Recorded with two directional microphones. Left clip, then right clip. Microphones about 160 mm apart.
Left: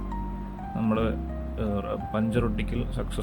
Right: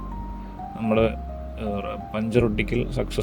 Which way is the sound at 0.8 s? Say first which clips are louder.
Right 6 dB; 25° right (ahead or behind).